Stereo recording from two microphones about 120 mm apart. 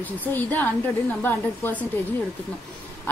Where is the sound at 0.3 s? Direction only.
15° left (ahead or behind).